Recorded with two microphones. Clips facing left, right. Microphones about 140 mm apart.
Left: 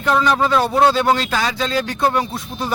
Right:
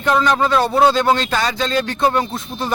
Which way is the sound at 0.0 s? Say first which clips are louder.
Right 1 dB; centre (ahead or behind).